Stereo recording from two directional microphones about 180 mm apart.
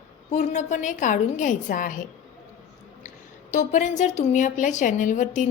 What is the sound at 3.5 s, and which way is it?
A woman's voice, 40° left (ahead or behind).